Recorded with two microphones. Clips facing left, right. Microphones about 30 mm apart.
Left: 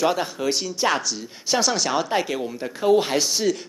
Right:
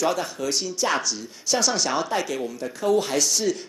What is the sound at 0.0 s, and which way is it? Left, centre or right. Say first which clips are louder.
Speech: left 2 dB; left.